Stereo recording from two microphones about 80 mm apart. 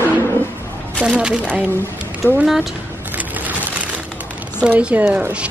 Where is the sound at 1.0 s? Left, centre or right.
Centre.